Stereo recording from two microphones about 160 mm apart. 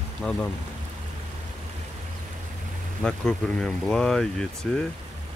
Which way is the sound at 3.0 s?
5° left (ahead or behind).